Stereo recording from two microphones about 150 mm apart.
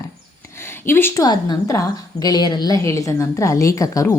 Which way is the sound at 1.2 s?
25° left (ahead or behind).